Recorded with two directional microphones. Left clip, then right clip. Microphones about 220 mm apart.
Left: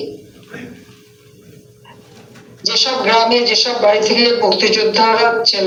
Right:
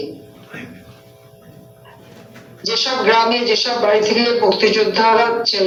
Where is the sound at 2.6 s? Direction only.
50° left (ahead or behind).